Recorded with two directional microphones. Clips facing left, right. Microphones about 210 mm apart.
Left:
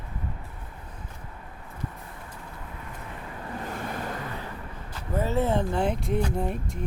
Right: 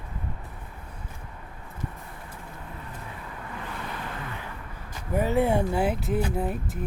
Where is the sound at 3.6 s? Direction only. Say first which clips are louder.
Left 3 dB; 45° left (ahead or behind).